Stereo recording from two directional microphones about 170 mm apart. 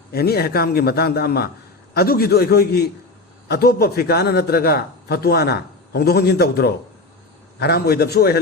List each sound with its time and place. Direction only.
0.1 s a man's voice: 70° left (ahead or behind)